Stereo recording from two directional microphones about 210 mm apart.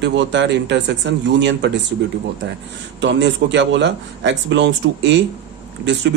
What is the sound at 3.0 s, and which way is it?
Speech, 60° right (ahead or behind).